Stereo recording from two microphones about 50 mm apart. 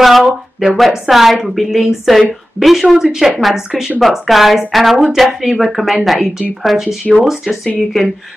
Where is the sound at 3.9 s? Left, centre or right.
Centre.